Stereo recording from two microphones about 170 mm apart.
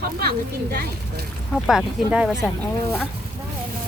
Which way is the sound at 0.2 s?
65° right (ahead or behind).